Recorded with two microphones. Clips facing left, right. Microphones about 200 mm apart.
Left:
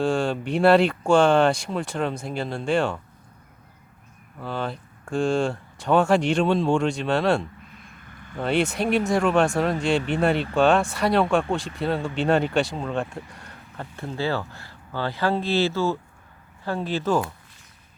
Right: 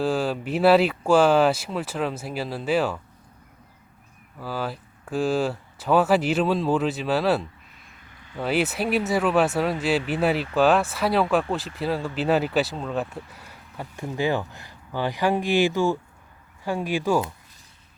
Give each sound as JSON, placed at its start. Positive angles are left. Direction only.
{"t": 0.0, "sound": "speech", "side_deg": -5}
{"t": 4.4, "sound": "speech", "side_deg": -5}
{"t": 8.1, "sound": "a sound", "side_deg": 50}
{"t": 8.4, "sound": "speech", "side_deg": -5}